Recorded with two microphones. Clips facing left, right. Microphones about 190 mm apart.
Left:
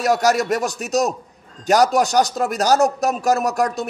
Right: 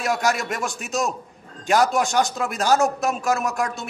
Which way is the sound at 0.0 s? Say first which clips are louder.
Left 6 dB; 40° left (ahead or behind).